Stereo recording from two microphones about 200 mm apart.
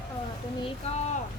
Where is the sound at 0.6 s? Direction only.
30° left (ahead or behind).